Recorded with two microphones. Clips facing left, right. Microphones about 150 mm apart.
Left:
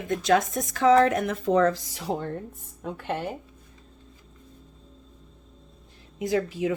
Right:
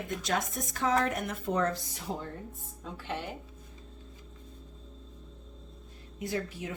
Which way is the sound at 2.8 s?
55° left (ahead or behind).